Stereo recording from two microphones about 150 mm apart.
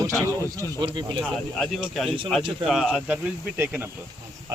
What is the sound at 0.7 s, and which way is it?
Speech, 30° right (ahead or behind).